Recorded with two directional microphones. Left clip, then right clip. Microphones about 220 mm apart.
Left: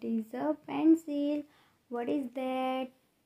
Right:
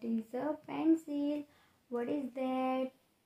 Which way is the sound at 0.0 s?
40° left (ahead or behind).